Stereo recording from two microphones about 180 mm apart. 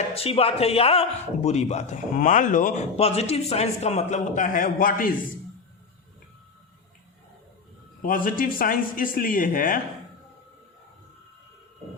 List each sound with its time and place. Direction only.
0.1 s speech: 35° left (ahead or behind); by 5.1 s 50° left (ahead or behind)
8.0 s speech: 50° left (ahead or behind)